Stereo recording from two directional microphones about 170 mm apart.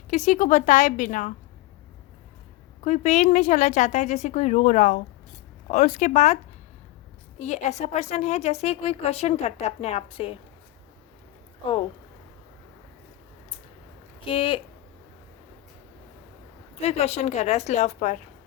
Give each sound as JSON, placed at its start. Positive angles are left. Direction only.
{"t": 0.1, "sound": "speech", "side_deg": 45}
{"t": 2.8, "sound": "a woman's voice", "side_deg": 45}
{"t": 14.3, "sound": "a woman's voice", "side_deg": 30}
{"t": 16.8, "sound": "a woman's voice", "side_deg": 40}